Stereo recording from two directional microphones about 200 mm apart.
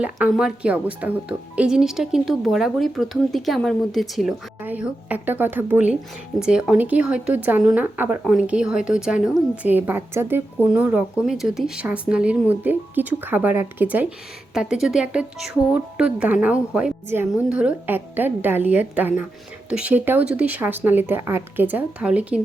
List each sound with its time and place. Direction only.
0.0 s a woman's voice: 5° right (ahead or behind)